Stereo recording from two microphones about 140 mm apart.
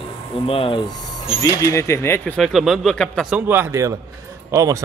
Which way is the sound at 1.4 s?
25° left (ahead or behind).